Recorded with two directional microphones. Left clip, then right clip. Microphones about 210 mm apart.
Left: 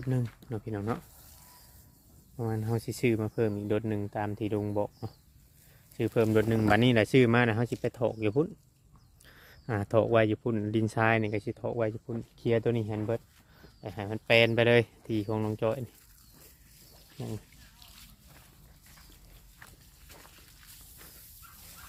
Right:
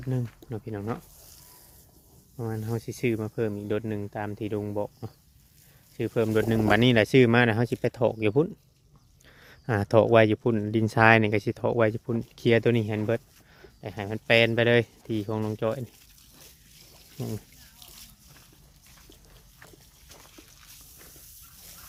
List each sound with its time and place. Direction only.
0.0 s speech: 5° left (ahead or behind)
2.3 s speech: centre (ahead or behind)
6.5 s speech: 15° right (ahead or behind)
9.2 s a sound: 15° right (ahead or behind)
9.6 s speech: 25° right (ahead or behind); by 13.0 s 40° right (ahead or behind)
13.6 s speech: 20° right (ahead or behind)
17.2 s a sound: 50° right (ahead or behind)
20.1 s slosh: centre (ahead or behind)